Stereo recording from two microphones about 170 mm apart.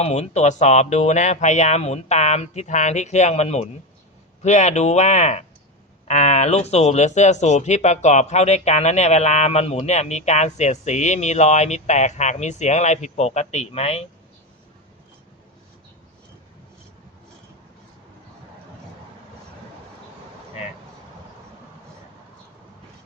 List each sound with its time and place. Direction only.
0.0 s speech: 40° left (ahead or behind)